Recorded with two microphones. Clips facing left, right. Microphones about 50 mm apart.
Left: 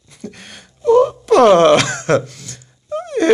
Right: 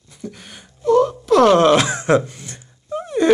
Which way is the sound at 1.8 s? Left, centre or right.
Centre.